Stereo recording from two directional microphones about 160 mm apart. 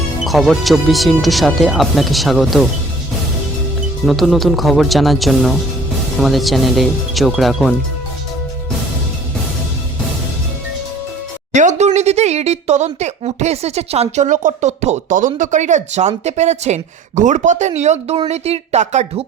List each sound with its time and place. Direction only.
0.3 s speech: centre (ahead or behind)
4.0 s speech: centre (ahead or behind)
11.5 s speech: 50° right (ahead or behind)